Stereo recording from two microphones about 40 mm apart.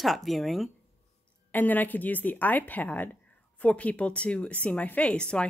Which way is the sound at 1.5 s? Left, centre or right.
Left.